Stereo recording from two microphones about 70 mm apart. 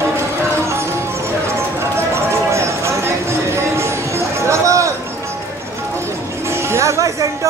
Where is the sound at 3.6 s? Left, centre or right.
Right.